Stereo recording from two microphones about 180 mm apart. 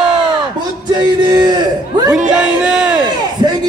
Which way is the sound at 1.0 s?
25° right (ahead or behind).